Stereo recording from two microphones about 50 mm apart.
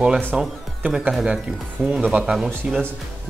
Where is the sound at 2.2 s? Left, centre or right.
Centre.